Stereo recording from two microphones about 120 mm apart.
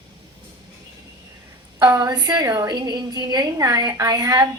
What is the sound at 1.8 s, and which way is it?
A woman's voice, 35° right (ahead or behind).